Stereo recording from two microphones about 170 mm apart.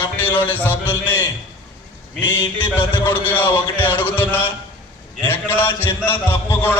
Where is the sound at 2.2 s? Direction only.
10° left (ahead or behind).